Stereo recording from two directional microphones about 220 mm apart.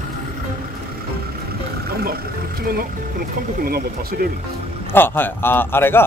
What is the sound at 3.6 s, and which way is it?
Speech, 40° right (ahead or behind).